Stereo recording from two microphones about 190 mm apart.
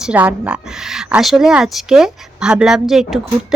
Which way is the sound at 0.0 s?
5° right (ahead or behind).